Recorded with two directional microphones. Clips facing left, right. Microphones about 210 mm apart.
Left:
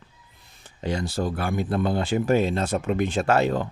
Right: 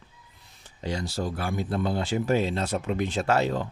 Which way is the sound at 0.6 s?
55° left (ahead or behind).